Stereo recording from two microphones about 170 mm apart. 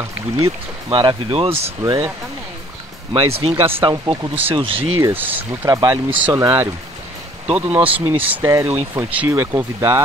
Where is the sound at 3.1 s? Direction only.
35° right (ahead or behind).